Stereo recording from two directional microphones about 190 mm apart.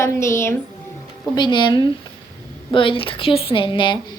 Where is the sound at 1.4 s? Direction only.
25° left (ahead or behind).